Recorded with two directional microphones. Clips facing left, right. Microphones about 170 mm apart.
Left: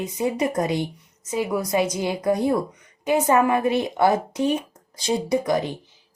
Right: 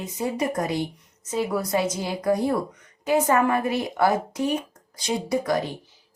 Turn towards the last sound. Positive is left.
turn(degrees=20)  # may be behind; listen again after turning